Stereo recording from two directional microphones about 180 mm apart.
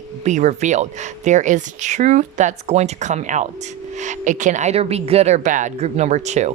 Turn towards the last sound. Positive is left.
turn(degrees=-40)  # may be behind; listen again after turning